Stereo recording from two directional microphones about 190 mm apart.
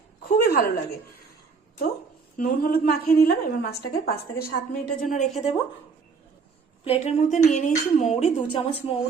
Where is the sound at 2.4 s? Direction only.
50° left (ahead or behind).